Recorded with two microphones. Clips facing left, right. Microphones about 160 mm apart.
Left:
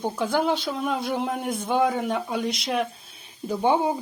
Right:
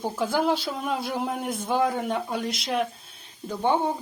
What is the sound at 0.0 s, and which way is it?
Speech, centre (ahead or behind).